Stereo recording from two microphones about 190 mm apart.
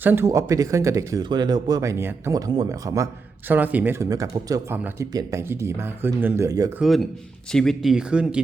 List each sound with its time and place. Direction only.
0.0 s speech: 10° right (ahead or behind)
6.7 s speech: centre (ahead or behind)